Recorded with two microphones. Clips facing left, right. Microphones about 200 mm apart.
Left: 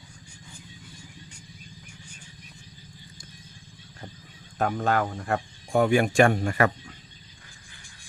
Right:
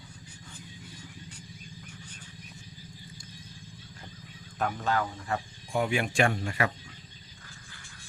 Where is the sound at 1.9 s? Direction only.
10° left (ahead or behind).